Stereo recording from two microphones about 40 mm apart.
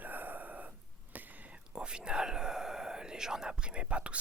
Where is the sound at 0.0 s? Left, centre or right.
Right.